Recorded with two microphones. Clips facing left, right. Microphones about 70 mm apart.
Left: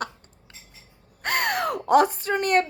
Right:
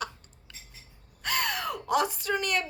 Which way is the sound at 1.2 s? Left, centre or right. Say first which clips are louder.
Left 6 dB; left.